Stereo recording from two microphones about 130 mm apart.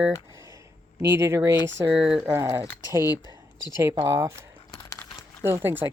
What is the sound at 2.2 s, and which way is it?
Speech, 25° right (ahead or behind).